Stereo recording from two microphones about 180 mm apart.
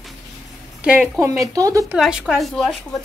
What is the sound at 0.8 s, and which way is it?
Speech, 5° right (ahead or behind).